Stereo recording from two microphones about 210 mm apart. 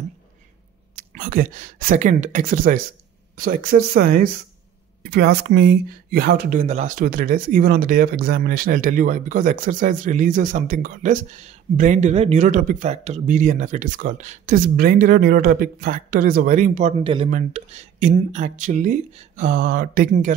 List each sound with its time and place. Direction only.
0.9 s speech: 40° right (ahead or behind)
17.0 s speech: 25° right (ahead or behind); by 20.3 s 40° right (ahead or behind)